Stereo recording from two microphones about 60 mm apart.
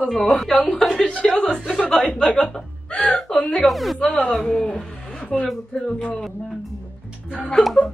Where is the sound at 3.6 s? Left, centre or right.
Centre.